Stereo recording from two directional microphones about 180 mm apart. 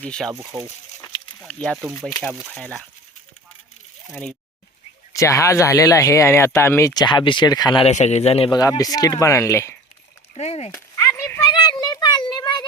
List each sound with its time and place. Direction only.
0.0 s speech: 5° left (ahead or behind)
1.4 s speech: 5° left (ahead or behind)
4.1 s speech: 5° left (ahead or behind)
5.1 s speech: 15° left (ahead or behind)
7.9 s speech: 40° left (ahead or behind)
8.8 s speech: 20° left (ahead or behind)
10.3 s speech: 35° left (ahead or behind)
10.9 s a sound: 15° left (ahead or behind)